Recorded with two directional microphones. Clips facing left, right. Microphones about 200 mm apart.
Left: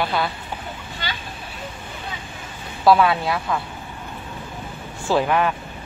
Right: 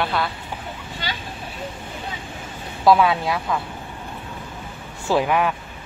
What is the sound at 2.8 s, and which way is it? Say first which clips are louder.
Speech: even; 15° right (ahead or behind).